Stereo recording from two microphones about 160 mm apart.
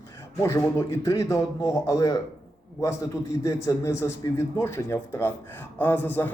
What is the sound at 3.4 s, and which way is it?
A man's voice, 20° left (ahead or behind).